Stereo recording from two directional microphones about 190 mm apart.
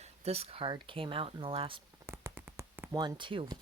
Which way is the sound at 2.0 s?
10° right (ahead or behind).